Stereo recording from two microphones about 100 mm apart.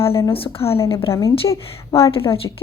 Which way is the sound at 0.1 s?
25° left (ahead or behind).